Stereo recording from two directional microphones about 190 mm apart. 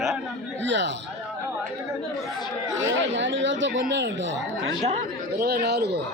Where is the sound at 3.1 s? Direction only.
75° right (ahead or behind).